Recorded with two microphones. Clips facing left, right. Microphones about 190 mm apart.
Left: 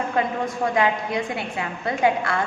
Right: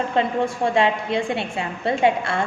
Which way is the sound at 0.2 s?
25° right (ahead or behind).